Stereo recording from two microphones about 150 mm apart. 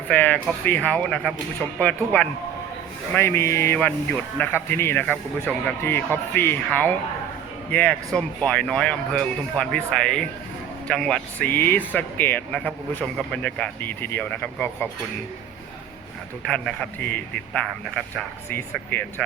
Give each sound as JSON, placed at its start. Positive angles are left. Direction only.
{"t": 0.1, "sound": "speech", "side_deg": 10}
{"t": 16.4, "sound": "speech", "side_deg": 5}